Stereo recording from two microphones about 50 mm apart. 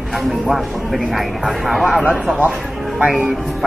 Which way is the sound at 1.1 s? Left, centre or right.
Centre.